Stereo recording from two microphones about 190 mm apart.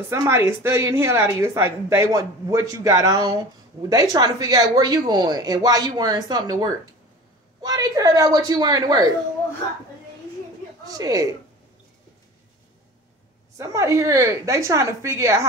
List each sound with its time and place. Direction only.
0.1 s a woman's voice: 15° right (ahead or behind)
10.9 s a woman's voice: 20° right (ahead or behind)
13.6 s a woman's voice: 15° right (ahead or behind)